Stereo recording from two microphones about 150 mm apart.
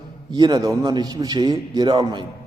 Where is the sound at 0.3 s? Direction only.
30° right (ahead or behind).